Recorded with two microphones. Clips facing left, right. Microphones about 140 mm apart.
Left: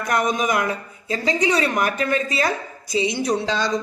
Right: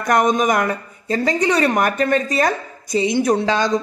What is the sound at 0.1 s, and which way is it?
Speech, 45° right (ahead or behind).